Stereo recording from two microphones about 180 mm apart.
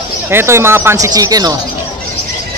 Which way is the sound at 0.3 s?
15° right (ahead or behind).